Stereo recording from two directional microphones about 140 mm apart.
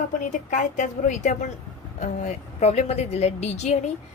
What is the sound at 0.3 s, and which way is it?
A woman's voice, 60° left (ahead or behind).